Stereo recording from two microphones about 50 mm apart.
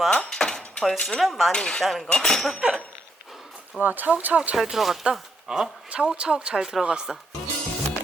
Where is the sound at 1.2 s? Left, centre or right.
Centre.